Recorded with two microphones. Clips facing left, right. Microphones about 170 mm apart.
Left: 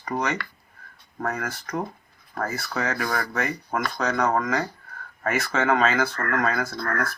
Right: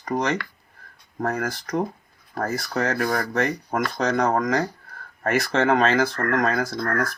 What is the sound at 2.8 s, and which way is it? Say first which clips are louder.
Speech: right 3 dB; 50° right (ahead or behind).